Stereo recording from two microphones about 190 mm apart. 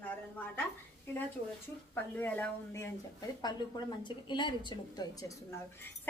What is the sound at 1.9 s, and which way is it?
Speech, 10° left (ahead or behind).